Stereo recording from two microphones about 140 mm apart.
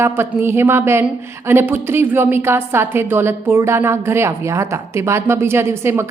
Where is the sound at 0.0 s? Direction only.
15° right (ahead or behind).